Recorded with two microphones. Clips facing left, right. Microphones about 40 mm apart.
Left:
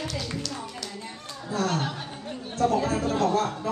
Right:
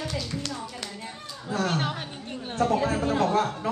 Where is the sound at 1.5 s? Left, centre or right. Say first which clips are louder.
Even; right.